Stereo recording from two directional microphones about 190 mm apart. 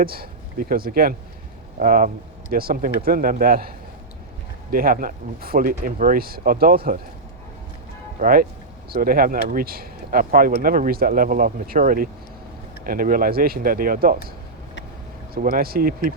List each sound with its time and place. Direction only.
0.0 s speech: 50° right (ahead or behind)
8.2 s speech: 50° right (ahead or behind)
15.4 s speech: 50° right (ahead or behind)